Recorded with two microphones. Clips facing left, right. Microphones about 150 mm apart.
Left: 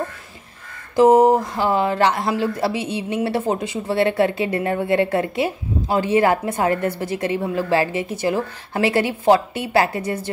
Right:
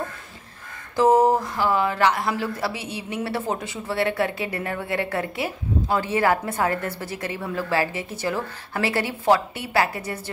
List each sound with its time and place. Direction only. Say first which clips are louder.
0.9 s speech: left 5 dB; 15° left (ahead or behind)